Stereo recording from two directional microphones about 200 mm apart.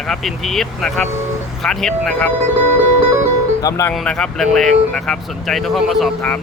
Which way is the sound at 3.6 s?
15° left (ahead or behind).